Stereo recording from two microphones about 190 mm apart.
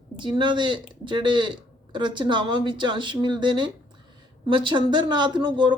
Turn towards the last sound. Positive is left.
turn(degrees=-25)  # may be behind; listen again after turning